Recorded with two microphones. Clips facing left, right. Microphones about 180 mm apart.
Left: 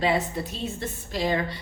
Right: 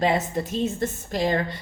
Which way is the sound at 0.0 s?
45° right (ahead or behind).